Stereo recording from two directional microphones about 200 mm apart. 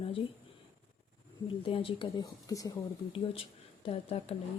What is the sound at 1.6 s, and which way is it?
Speech, 25° left (ahead or behind).